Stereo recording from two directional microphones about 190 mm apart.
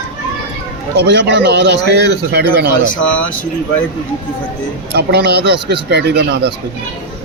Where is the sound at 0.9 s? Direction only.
65° right (ahead or behind).